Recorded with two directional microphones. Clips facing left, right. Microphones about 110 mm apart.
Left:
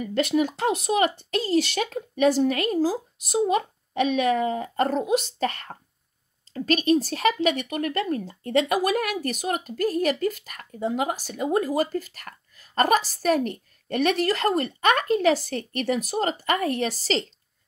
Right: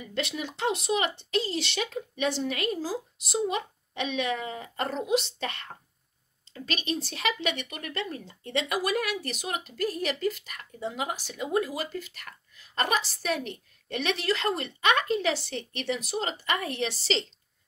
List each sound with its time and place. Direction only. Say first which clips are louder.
0.0 s speech: left 10 dB; 45° left (ahead or behind)